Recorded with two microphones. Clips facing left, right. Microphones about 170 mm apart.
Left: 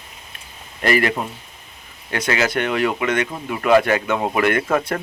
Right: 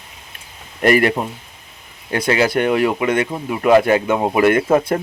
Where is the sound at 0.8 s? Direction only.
50° right (ahead or behind).